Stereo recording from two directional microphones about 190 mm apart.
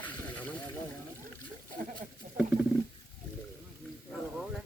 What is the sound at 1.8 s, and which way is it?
Speech, 45° right (ahead or behind).